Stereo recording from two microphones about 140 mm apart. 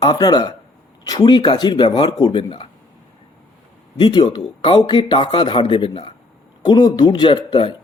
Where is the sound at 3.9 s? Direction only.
35° left (ahead or behind).